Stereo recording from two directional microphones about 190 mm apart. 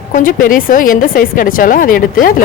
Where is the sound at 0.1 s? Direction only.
45° left (ahead or behind).